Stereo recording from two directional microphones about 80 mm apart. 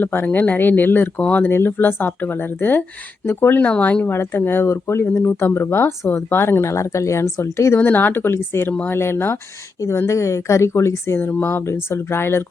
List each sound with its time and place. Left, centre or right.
0.0 s speech: left
1.5 s speech: left
3.7 s speech: centre; by 7.8 s left
7.8 s speech: left